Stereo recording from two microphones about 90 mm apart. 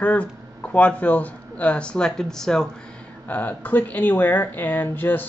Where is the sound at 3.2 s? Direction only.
20° left (ahead or behind).